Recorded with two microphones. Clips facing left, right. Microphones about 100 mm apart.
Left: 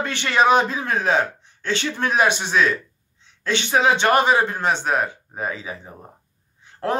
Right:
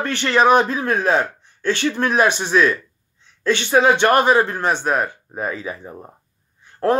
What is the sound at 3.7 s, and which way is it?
Speech, 55° right (ahead or behind).